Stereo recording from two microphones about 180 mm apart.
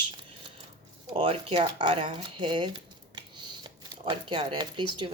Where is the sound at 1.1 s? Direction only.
30° right (ahead or behind).